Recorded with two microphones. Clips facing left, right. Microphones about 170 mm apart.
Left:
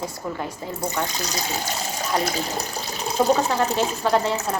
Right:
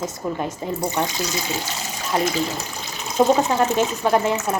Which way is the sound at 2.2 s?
35° left (ahead or behind).